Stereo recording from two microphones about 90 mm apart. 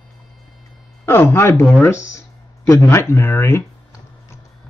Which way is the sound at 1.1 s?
25° left (ahead or behind).